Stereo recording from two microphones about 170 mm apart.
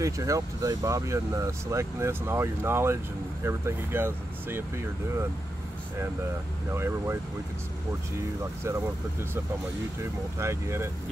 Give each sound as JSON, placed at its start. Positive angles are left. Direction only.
{"t": 0.0, "sound": "speech", "side_deg": -20}
{"t": 6.7, "sound": "speech", "side_deg": -15}
{"t": 10.4, "sound": "speech", "side_deg": -15}